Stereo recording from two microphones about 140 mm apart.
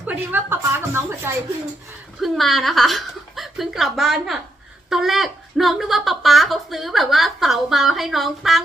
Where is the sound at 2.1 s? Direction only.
Centre (ahead or behind).